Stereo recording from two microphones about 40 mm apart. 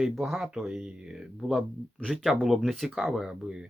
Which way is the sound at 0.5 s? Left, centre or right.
Centre.